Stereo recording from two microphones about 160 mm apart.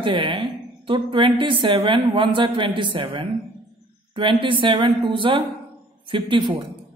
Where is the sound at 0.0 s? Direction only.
30° right (ahead or behind).